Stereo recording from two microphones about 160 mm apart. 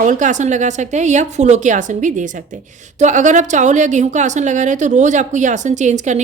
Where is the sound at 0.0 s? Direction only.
50° right (ahead or behind).